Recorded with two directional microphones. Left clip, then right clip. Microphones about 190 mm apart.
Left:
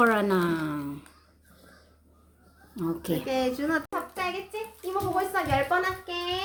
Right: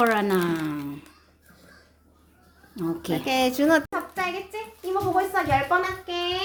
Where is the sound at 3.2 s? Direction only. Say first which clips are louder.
Right 8 dB; 60° right (ahead or behind).